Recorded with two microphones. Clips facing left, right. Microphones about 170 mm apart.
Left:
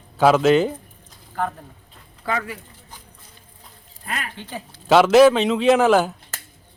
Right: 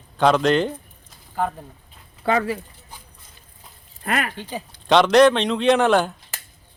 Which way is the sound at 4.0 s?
70° right (ahead or behind).